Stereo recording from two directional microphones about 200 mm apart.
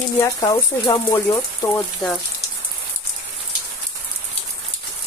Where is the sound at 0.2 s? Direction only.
20° left (ahead or behind).